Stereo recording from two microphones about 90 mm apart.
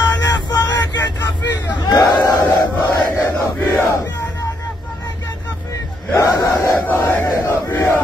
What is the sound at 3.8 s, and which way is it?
Crowd, 30° left (ahead or behind).